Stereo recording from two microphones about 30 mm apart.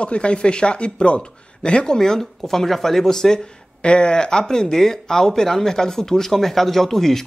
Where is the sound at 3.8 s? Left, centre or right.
Left; by 7.2 s centre.